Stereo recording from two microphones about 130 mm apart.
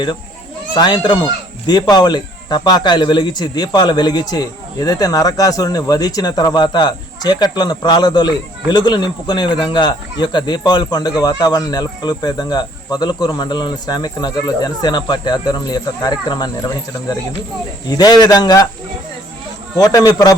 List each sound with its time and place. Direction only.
0.7 s speech: 35° left (ahead or behind)
17.8 s a man's voice: 30° left (ahead or behind)
19.7 s a man's voice: 30° left (ahead or behind)